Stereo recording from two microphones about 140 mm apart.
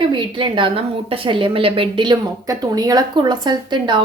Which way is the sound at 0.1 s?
35° right (ahead or behind).